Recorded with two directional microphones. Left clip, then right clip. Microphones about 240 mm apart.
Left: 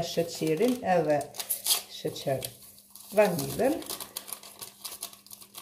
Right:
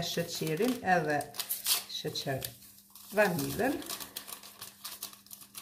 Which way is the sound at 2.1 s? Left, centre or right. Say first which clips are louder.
Left 7 dB; right.